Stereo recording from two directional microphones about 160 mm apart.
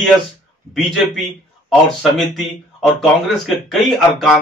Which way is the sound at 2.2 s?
Centre (ahead or behind).